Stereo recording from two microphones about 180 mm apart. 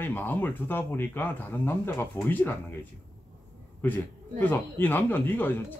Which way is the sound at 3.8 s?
10° left (ahead or behind).